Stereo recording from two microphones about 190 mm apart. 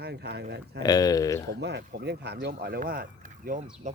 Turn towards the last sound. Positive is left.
turn(degrees=-40)  # may be behind; listen again after turning